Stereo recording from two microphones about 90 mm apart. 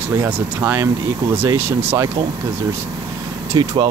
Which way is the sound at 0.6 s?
20° right (ahead or behind).